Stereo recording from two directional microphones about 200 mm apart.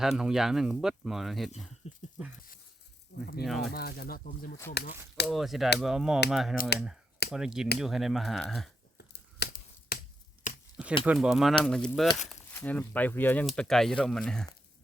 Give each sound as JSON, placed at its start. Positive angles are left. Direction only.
{"t": 0.0, "sound": "speech", "side_deg": 0}
{"t": 1.8, "sound": "speech", "side_deg": 35}
{"t": 3.4, "sound": "speech", "side_deg": 0}
{"t": 3.7, "sound": "speech", "side_deg": 50}
{"t": 5.3, "sound": "speech", "side_deg": 0}
{"t": 9.0, "sound": "tearing", "side_deg": 55}
{"t": 10.5, "sound": "a sound", "side_deg": 40}
{"t": 11.0, "sound": "speech", "side_deg": -5}